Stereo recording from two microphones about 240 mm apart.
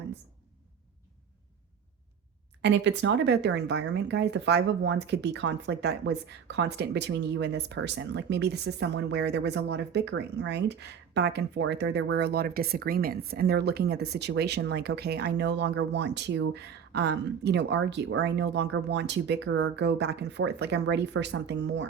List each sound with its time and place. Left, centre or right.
2.6 s speech: right